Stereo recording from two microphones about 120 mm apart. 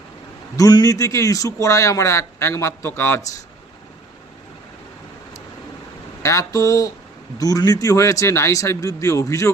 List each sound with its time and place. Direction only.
0.5 s a man's voice: 30° left (ahead or behind)
6.2 s a man's voice: 25° left (ahead or behind)